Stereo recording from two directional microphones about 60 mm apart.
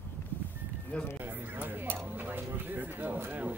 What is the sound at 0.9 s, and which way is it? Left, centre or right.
Speech, left.